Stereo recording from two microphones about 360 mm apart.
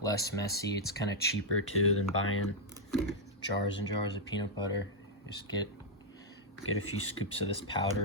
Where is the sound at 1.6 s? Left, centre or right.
Left.